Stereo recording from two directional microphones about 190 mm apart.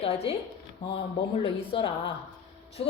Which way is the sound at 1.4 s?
25° left (ahead or behind).